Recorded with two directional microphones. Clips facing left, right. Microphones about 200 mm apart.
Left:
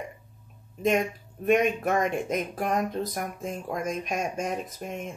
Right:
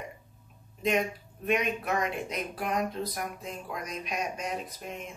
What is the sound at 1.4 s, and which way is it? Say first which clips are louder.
Speech: left 6 dB; 45° left (ahead or behind).